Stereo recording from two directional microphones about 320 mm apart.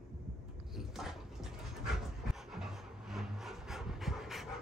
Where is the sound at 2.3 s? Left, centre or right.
Centre.